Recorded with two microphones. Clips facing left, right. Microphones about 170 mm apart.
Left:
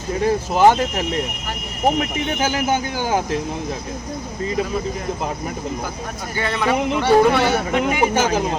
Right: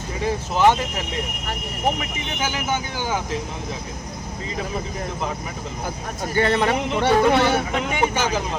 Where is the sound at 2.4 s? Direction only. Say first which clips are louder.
Left 4 dB; 40° left (ahead or behind).